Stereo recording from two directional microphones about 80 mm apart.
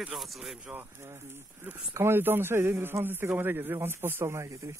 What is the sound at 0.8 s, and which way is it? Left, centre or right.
A man's voice, right.